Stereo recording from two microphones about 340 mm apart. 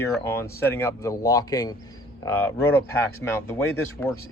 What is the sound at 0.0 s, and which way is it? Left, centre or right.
A man's voice, centre.